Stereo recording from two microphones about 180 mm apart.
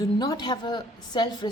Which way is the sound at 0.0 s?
20° left (ahead or behind).